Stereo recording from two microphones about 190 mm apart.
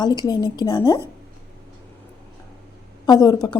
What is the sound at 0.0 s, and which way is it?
Speech, 20° left (ahead or behind).